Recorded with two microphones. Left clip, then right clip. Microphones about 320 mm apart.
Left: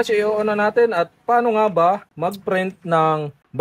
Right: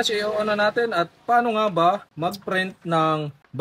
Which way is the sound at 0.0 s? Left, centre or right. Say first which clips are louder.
Left 4 dB; centre.